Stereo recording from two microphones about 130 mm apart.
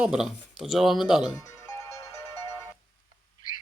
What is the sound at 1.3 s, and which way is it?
Music, 20° left (ahead or behind).